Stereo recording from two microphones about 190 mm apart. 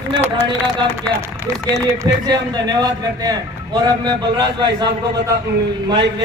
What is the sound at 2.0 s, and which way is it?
A man's voice, 20° right (ahead or behind).